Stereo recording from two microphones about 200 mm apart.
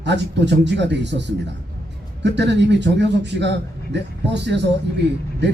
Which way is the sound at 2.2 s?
60° right (ahead or behind).